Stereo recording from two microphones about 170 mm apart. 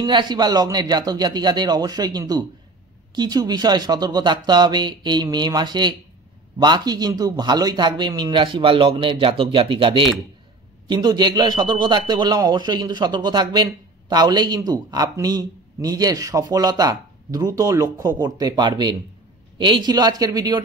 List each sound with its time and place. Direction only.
0.0 s a man's voice: 25° right (ahead or behind)